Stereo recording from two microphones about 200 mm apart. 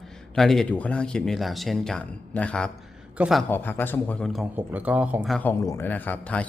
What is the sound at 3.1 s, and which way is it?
Speech, 5° right (ahead or behind).